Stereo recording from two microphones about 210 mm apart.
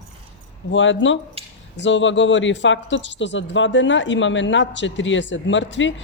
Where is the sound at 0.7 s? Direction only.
60° left (ahead or behind).